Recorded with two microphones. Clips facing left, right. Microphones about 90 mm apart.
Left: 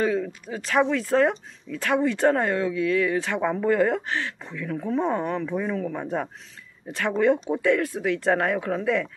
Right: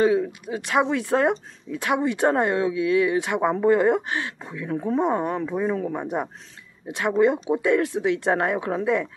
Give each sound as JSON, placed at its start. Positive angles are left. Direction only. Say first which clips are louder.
{"t": 0.1, "sound": "speech", "louder": "right 4 dB", "side_deg": -20}
{"t": 4.6, "sound": "speech", "louder": "right 2 dB", "side_deg": -30}
{"t": 5.0, "sound": "speech", "louder": "right 2 dB", "side_deg": -15}